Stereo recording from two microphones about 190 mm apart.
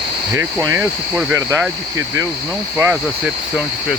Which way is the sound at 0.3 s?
15° right (ahead or behind).